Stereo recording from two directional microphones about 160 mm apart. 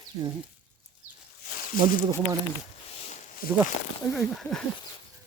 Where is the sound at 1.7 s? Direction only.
60° left (ahead or behind).